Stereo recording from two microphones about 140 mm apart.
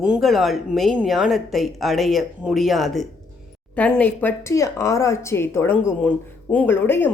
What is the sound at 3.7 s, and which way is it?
Speech, 10° left (ahead or behind).